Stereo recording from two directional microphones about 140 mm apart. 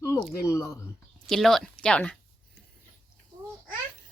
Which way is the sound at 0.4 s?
20° left (ahead or behind).